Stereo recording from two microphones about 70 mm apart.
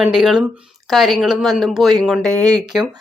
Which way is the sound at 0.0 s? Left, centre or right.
Centre.